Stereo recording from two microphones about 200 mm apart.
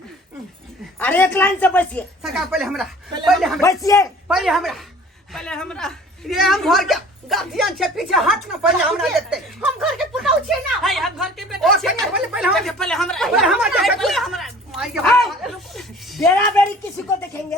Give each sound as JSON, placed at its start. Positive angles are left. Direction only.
{"t": 0.9, "sound": "speech", "side_deg": 10}
{"t": 3.6, "sound": "speech", "side_deg": 15}
{"t": 4.3, "sound": "speech", "side_deg": 0}